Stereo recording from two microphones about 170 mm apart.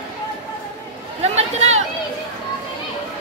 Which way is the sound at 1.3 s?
40° right (ahead or behind).